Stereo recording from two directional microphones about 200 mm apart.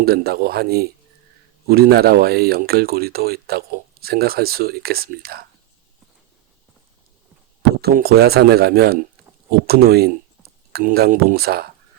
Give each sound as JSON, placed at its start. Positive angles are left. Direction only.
{"t": 0.0, "sound": "speech", "side_deg": -50}
{"t": 7.8, "sound": "speech", "side_deg": -50}